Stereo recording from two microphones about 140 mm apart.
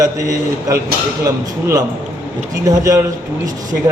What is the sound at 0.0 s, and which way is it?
A man's voice, 25° right (ahead or behind).